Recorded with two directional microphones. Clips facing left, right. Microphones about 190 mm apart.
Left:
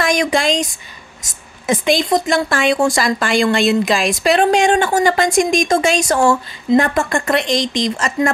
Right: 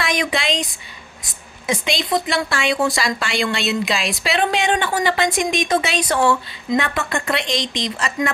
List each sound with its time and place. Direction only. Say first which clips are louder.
0.0 s speech: left 6 dB; 45° left (ahead or behind)